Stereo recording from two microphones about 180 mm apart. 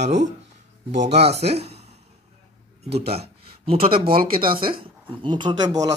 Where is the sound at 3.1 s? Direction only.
35° right (ahead or behind).